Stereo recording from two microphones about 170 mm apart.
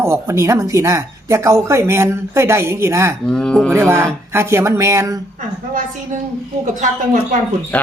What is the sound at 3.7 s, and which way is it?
Speech, 15° right (ahead or behind).